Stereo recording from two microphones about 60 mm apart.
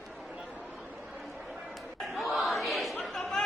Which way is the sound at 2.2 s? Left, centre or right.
Centre.